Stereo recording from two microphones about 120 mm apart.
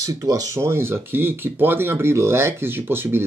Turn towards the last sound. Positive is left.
turn(degrees=-20)  # may be behind; listen again after turning